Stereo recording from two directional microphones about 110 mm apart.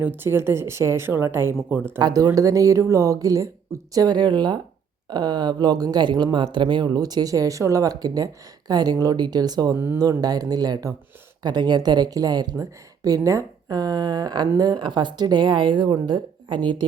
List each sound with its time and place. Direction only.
0.2 s speech: 20° right (ahead or behind)
2.0 s speech: 40° right (ahead or behind)
9.7 s speech: 20° right (ahead or behind)
10.0 s speech: 35° right (ahead or behind)